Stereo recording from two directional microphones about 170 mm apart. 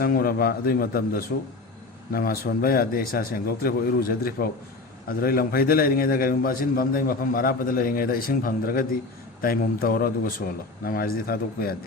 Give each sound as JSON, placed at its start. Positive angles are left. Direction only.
{"t": 0.0, "sound": "a man's voice", "side_deg": 60}